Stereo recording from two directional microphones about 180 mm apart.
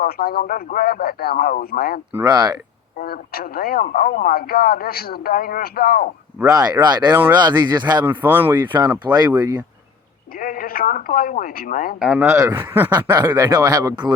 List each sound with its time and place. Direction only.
0.0 s speech: 55° left (ahead or behind)
2.2 s speech: 20° right (ahead or behind)
3.0 s speech: 55° left (ahead or behind)
6.4 s speech: 20° right (ahead or behind)
8.2 s speech: 10° right (ahead or behind)
10.3 s speech: 50° left (ahead or behind)
11.9 s speech: 5° right (ahead or behind); by 14.1 s 25° right (ahead or behind)